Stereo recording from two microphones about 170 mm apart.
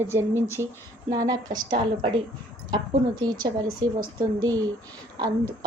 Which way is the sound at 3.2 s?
25° right (ahead or behind).